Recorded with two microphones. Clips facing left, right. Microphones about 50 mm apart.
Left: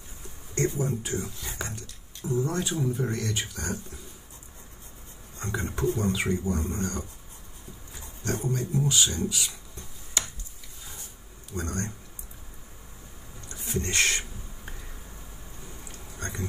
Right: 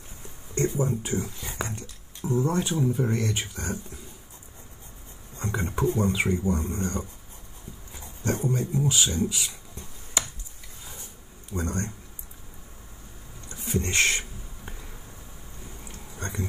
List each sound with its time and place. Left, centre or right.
0.6 s speech: right
5.4 s speech: centre
7.9 s a sound: centre
8.5 s speech: right
11.5 s speech: right
13.7 s speech: right
15.9 s a sound: right